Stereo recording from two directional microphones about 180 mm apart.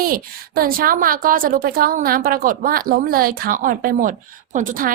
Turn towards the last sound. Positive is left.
turn(degrees=-50)  # may be behind; listen again after turning